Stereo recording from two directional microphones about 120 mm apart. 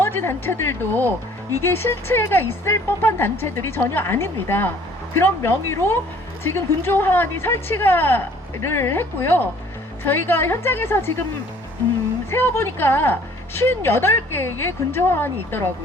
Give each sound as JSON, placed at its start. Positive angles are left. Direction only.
{"t": 0.0, "sound": "a woman's voice", "side_deg": 20}
{"t": 12.3, "sound": "a woman's voice", "side_deg": 20}